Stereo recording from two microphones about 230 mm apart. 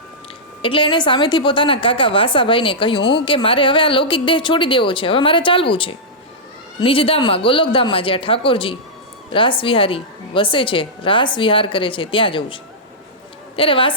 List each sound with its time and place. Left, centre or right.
0.6 s speech: left
13.6 s speech: left